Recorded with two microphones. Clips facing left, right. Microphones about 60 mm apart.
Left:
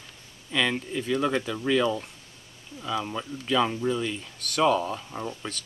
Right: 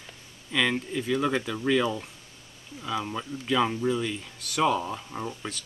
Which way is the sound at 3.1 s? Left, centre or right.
Centre.